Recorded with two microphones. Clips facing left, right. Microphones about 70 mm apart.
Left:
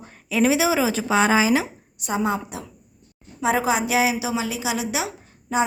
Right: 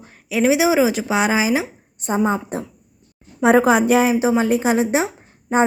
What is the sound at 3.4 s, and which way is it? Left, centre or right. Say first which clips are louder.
A woman's voice: right 7 dB; right.